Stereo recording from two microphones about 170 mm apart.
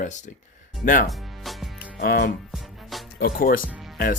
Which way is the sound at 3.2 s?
60° left (ahead or behind).